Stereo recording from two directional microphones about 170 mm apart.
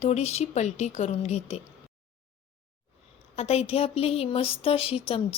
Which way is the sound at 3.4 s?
35° left (ahead or behind).